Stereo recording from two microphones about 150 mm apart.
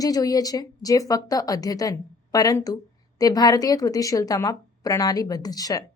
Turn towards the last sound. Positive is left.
turn(degrees=25)  # may be behind; listen again after turning